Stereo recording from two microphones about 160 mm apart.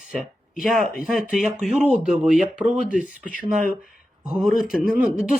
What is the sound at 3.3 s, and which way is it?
Speech, 60° right (ahead or behind).